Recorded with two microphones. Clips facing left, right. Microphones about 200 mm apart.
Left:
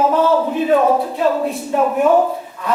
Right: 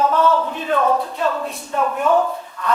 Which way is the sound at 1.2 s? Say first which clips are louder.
Left 5 dB; 20° left (ahead or behind).